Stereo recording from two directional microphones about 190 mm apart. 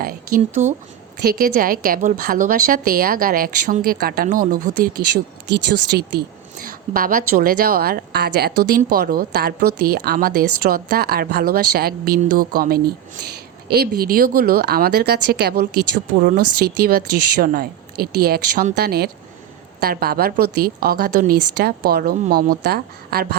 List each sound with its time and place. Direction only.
0.0 s a woman's voice: 50° right (ahead or behind)
5.5 s a woman's voice: 65° right (ahead or behind)